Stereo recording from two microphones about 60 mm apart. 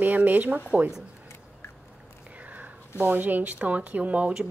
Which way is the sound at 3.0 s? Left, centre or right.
Right.